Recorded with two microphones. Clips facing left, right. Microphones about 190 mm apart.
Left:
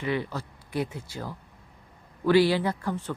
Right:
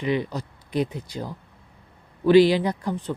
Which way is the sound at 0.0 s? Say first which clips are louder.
Right 4 dB; 20° right (ahead or behind).